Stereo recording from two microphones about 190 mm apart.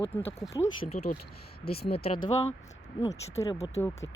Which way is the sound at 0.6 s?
40° left (ahead or behind).